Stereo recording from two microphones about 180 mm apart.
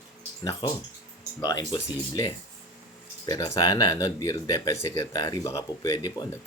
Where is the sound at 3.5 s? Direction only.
20° left (ahead or behind).